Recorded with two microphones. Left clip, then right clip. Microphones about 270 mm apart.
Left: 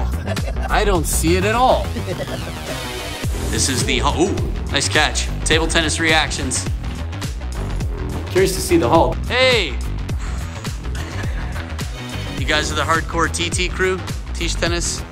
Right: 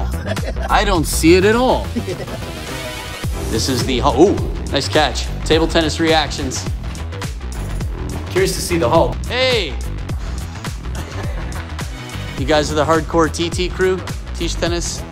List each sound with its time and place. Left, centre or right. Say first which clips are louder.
1.2 s speech: right 5 dB; centre
3.5 s speech: right 1 dB; centre
8.3 s speech: left 1 dB; centre
9.3 s speech: left 3 dB; centre
12.4 s speech: right 4 dB; centre